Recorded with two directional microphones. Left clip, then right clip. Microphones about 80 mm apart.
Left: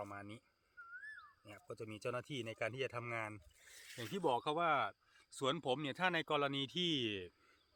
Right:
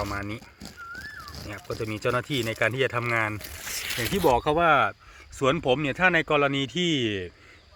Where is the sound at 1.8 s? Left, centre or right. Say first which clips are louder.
Right 17 dB; right.